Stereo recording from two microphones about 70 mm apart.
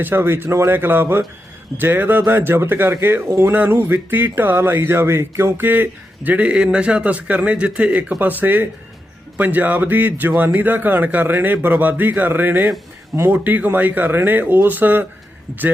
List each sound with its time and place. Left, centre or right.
0.0 s speech: right; by 8.2 s centre
8.2 s speech: right